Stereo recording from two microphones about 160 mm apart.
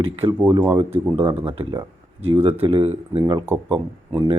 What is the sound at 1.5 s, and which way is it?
Speech, 35° right (ahead or behind).